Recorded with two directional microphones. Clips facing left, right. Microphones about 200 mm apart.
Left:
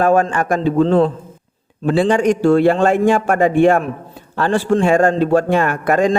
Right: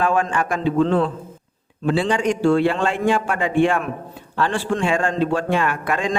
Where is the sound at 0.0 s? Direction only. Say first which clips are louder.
Left 6 dB; 40° left (ahead or behind).